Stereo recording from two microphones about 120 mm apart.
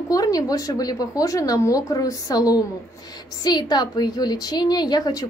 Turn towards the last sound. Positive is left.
turn(degrees=30)  # may be behind; listen again after turning